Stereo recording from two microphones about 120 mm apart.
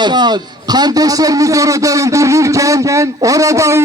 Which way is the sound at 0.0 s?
35° right (ahead or behind).